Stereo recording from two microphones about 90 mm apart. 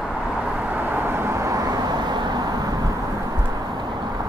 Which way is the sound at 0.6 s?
20° right (ahead or behind).